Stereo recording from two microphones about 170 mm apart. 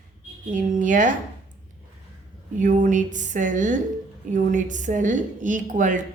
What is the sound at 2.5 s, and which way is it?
A woman's voice, 50° right (ahead or behind).